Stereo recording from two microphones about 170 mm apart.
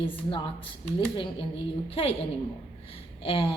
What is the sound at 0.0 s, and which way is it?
A woman's voice, 30° left (ahead or behind).